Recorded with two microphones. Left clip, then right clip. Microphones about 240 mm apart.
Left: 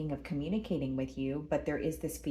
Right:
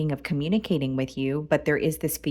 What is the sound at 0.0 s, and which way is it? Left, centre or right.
A woman's voice, right.